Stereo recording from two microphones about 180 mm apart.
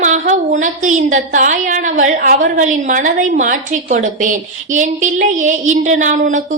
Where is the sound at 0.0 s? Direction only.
45° right (ahead or behind).